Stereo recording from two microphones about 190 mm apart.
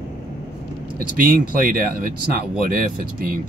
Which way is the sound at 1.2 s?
50° right (ahead or behind).